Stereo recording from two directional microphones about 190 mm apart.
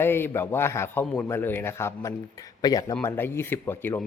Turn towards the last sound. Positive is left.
turn(degrees=10)  # may be behind; listen again after turning